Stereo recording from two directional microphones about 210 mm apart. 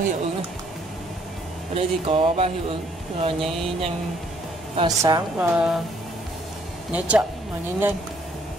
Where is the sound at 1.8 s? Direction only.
25° right (ahead or behind).